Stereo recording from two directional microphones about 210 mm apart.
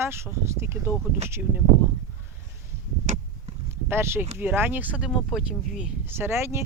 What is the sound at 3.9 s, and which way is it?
Speech, 10° right (ahead or behind).